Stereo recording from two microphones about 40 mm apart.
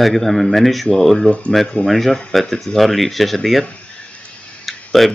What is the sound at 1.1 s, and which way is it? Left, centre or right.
Speech, left.